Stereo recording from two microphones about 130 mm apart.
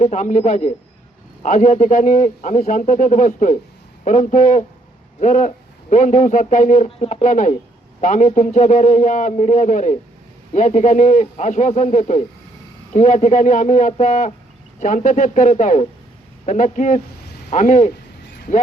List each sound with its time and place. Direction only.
0.0 s a man's voice: 65° left (ahead or behind)
6.8 s a man's voice: 60° left (ahead or behind)